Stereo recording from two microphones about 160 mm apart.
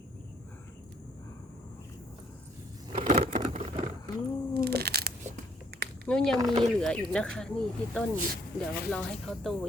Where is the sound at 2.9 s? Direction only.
60° right (ahead or behind).